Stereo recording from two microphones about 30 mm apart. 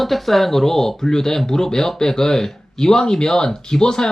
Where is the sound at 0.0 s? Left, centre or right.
Centre.